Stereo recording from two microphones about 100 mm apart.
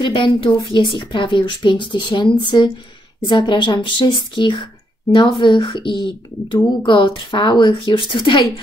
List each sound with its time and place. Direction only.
0.0 s a woman's voice: 55° left (ahead or behind)